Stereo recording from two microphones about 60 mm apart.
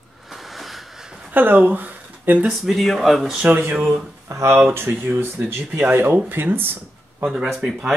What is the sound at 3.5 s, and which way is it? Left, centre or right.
Speech, right.